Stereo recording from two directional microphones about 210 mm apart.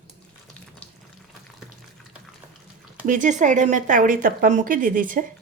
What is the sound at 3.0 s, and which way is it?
A woman's voice, 40° right (ahead or behind).